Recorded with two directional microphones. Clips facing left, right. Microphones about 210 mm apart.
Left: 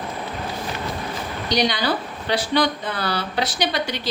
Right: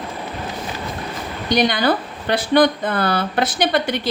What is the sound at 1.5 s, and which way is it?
A woman's voice, 55° right (ahead or behind).